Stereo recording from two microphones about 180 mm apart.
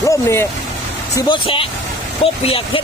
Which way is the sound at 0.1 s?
15° left (ahead or behind).